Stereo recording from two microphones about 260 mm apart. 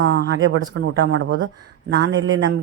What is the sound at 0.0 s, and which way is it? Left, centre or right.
A man's voice, right.